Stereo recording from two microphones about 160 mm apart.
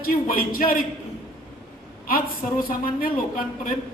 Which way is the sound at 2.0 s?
65° left (ahead or behind).